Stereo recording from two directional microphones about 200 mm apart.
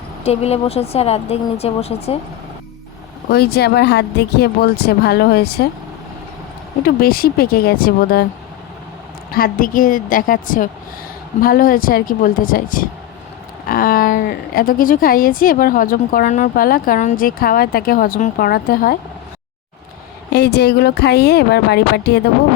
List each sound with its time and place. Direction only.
0.3 s speech: 30° left (ahead or behind)
3.2 s a woman's voice: 50° left (ahead or behind)
6.8 s a woman's voice: 50° left (ahead or behind)
9.3 s a woman's voice: 45° left (ahead or behind)
20.3 s speech: 55° left (ahead or behind)